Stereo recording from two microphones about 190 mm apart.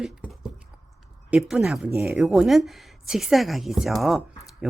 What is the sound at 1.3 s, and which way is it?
A woman's voice, 5° right (ahead or behind).